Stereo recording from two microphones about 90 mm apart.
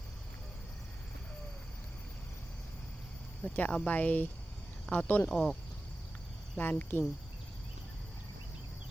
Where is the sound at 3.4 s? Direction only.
15° left (ahead or behind).